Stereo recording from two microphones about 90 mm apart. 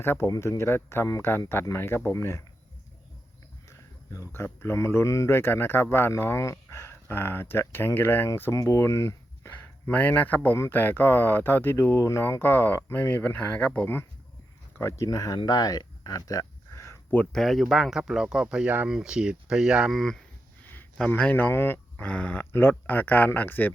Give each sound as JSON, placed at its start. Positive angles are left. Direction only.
{"t": 0.0, "sound": "speech", "side_deg": 25}
{"t": 3.7, "sound": "speech", "side_deg": 35}
{"t": 9.5, "sound": "speech", "side_deg": 20}
{"t": 15.0, "sound": "speech", "side_deg": 45}
{"t": 15.4, "sound": "a sound", "side_deg": 45}
{"t": 17.3, "sound": "speech", "side_deg": 0}
{"t": 20.0, "sound": "speech", "side_deg": 5}
{"t": 21.1, "sound": "speech", "side_deg": 15}
{"t": 22.0, "sound": "speech", "side_deg": 15}